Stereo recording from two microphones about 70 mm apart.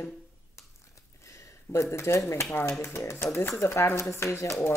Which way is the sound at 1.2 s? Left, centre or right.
Left.